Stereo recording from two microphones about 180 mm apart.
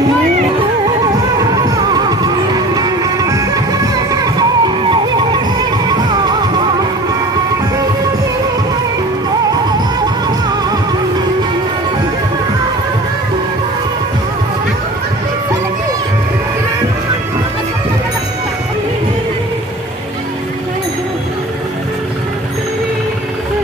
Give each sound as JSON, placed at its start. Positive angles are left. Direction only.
{"t": 1.4, "sound": "music", "side_deg": -20}